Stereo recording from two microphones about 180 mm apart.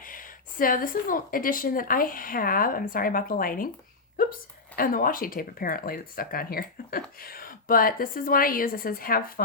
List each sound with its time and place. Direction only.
0.0 s speech: 50° left (ahead or behind)
4.2 s a sound: 55° left (ahead or behind)
4.8 s speech: 50° left (ahead or behind)